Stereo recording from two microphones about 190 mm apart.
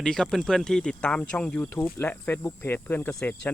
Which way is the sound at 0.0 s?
5° left (ahead or behind).